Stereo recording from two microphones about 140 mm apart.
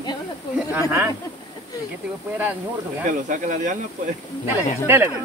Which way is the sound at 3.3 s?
65° right (ahead or behind).